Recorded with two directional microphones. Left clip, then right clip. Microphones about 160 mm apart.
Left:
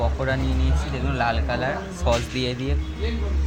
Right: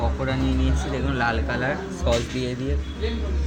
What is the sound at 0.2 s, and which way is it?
A man's voice, 5° left (ahead or behind).